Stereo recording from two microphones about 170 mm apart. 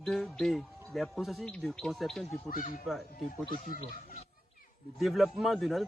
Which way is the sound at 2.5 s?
50° left (ahead or behind).